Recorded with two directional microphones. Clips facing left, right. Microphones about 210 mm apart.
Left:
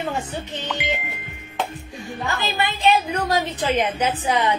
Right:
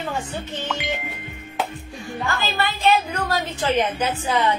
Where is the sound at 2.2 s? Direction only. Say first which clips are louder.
Even; 20° left (ahead or behind).